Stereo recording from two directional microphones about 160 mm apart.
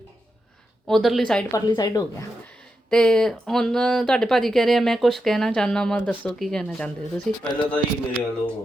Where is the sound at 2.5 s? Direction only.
5° left (ahead or behind).